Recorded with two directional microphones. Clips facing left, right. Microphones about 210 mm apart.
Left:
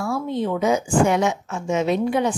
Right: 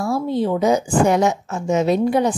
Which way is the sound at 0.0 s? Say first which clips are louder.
Right 4 dB; 35° right (ahead or behind).